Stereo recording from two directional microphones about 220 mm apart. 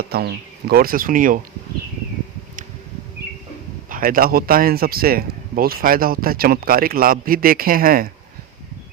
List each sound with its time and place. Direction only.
0.1 s speech: 45° right (ahead or behind)
3.8 s speech: 40° right (ahead or behind)